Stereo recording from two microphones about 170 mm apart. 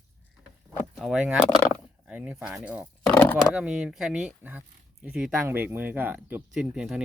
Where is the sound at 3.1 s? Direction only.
10° left (ahead or behind).